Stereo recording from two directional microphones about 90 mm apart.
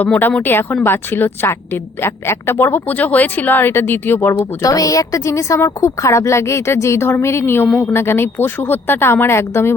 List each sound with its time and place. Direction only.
0.0 s a woman's voice: 20° left (ahead or behind)
4.6 s a woman's voice: 40° left (ahead or behind)